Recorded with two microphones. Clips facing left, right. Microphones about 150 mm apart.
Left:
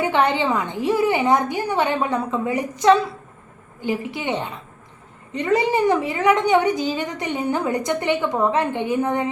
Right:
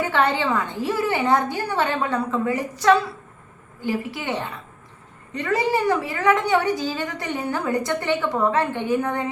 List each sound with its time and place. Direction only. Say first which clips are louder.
0.0 s a woman's voice: left 2 dB; 15° left (ahead or behind)